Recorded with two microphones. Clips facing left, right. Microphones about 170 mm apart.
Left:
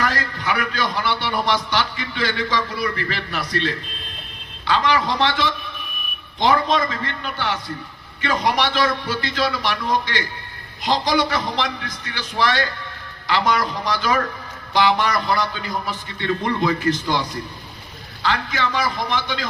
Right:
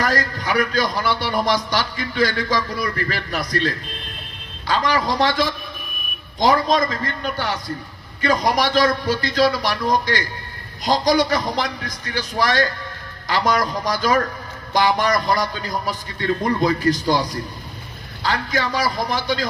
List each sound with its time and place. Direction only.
0.0 s a man's voice: 40° right (ahead or behind)